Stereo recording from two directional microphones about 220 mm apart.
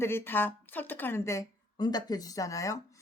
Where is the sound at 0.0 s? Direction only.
10° left (ahead or behind).